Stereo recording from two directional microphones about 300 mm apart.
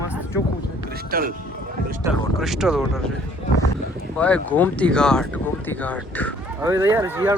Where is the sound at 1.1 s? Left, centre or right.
Right.